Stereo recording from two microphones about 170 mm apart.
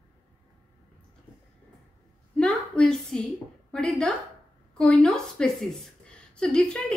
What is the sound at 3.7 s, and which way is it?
A woman's voice, 5° left (ahead or behind).